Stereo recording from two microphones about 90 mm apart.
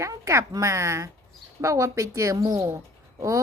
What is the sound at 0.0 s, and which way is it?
Speech, 35° right (ahead or behind).